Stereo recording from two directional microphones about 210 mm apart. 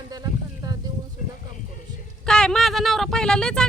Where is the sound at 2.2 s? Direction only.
5° left (ahead or behind).